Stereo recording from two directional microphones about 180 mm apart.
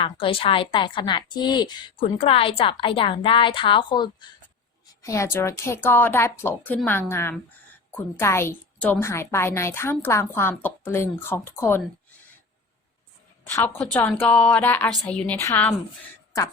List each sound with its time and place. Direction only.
0.0 s a woman's voice: 30° left (ahead or behind); by 11.8 s 15° left (ahead or behind)
13.4 s a woman's voice: 10° left (ahead or behind)